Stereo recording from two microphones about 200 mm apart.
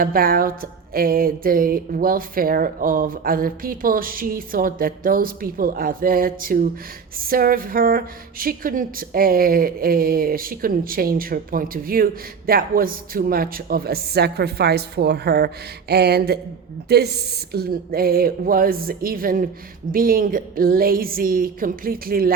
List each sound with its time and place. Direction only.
0.0 s speech: 50° right (ahead or behind)